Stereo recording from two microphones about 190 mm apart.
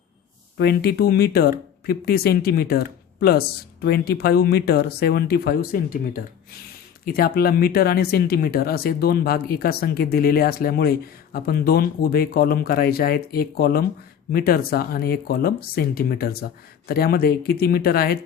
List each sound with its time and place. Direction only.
0.5 s speech: 55° left (ahead or behind)